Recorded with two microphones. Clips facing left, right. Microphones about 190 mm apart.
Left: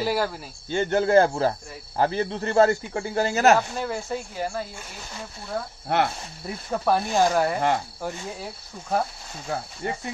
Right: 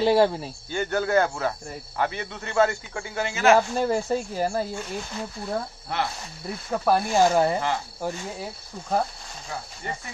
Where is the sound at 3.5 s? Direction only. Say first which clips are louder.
Right 5 dB; 40° right (ahead or behind).